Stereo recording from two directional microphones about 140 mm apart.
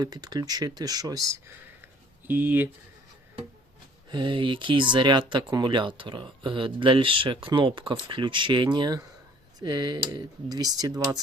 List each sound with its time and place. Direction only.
0.0 s speech: 30° right (ahead or behind)
4.1 s speech: 35° right (ahead or behind)